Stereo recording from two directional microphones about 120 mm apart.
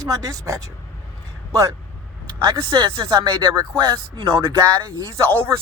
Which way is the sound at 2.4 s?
45° right (ahead or behind).